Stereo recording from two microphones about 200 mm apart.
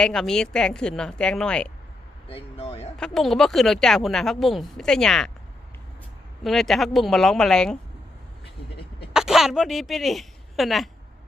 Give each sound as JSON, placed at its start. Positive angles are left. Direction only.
{"t": 0.0, "sound": "speech", "side_deg": 0}
{"t": 2.3, "sound": "speech", "side_deg": 30}
{"t": 3.0, "sound": "speech", "side_deg": 0}
{"t": 6.4, "sound": "speech", "side_deg": 0}
{"t": 9.1, "sound": "speech", "side_deg": 0}